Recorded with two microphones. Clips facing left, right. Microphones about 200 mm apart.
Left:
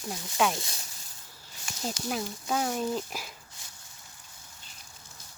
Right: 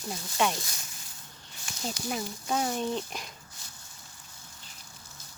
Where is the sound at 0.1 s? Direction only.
Centre (ahead or behind).